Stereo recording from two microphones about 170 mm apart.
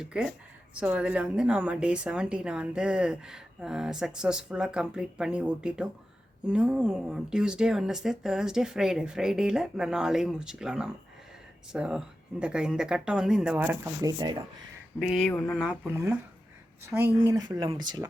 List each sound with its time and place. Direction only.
0.0 s speech: 5° right (ahead or behind)
14.0 s speech: 25° right (ahead or behind)
14.9 s speech: centre (ahead or behind)
15.9 s speech: 15° right (ahead or behind)
17.2 s speech: 20° right (ahead or behind)